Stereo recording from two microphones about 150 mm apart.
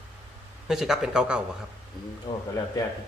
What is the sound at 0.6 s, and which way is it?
Speech, centre (ahead or behind).